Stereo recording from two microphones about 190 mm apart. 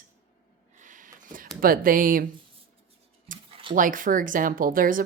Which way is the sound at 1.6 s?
50° right (ahead or behind).